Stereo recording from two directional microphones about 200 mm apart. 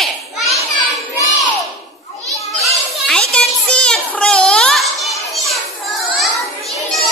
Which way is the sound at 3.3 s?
5° left (ahead or behind).